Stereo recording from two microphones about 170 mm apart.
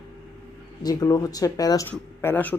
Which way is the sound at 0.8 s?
20° left (ahead or behind).